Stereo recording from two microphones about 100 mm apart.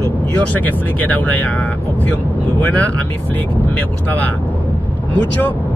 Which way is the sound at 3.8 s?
15° left (ahead or behind).